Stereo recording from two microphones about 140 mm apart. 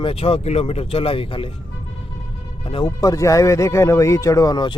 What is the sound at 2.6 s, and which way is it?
Speech, 40° left (ahead or behind).